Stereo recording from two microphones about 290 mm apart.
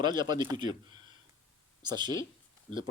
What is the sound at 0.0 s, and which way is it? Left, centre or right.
Speech, centre.